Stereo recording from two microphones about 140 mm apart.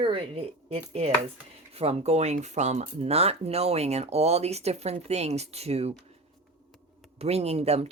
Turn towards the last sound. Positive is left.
turn(degrees=-50)  # may be behind; listen again after turning